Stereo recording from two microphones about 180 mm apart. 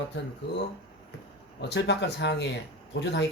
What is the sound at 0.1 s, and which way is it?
Speech, 80° left.